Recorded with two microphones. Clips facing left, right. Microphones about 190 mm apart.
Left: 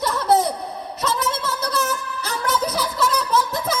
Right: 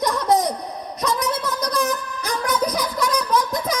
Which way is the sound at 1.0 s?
5° left (ahead or behind).